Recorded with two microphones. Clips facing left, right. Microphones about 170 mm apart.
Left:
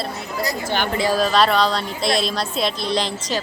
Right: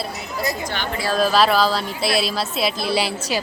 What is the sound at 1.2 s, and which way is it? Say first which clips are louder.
Speech: right 3 dB; centre (ahead or behind).